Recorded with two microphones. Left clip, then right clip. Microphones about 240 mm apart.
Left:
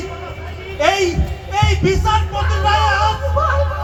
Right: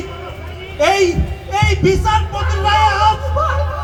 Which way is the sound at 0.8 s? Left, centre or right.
Right.